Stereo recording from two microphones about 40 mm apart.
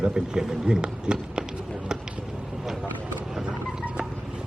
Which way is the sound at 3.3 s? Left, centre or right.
Centre.